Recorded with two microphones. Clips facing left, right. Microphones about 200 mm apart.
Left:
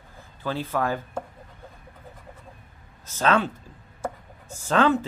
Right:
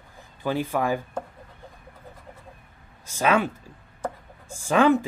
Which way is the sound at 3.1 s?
10° right (ahead or behind).